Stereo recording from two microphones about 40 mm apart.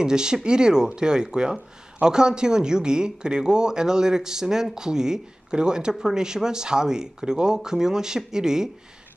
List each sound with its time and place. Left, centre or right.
0.0 s speech: centre